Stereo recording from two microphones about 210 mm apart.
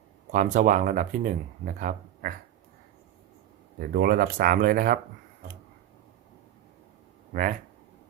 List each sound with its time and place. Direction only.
0.3 s speech: 35° right (ahead or behind)
3.8 s speech: 45° right (ahead or behind)
7.3 s speech: 40° right (ahead or behind)